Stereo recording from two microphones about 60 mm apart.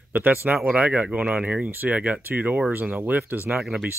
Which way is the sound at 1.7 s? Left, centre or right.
Right.